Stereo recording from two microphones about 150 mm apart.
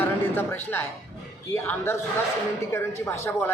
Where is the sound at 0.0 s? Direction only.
15° left (ahead or behind).